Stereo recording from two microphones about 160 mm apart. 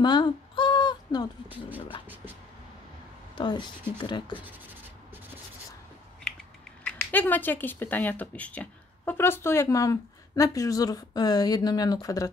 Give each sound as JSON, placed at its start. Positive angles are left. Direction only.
{"t": 0.0, "sound": "a sound", "side_deg": 30}
{"t": 3.3, "sound": "speech", "side_deg": 30}
{"t": 4.4, "sound": "writing", "side_deg": -10}
{"t": 6.8, "sound": "speech", "side_deg": 10}